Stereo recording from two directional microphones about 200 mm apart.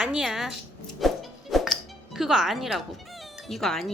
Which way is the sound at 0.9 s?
Centre (ahead or behind).